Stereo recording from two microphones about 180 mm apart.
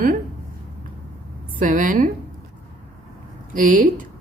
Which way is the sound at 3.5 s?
45° right (ahead or behind).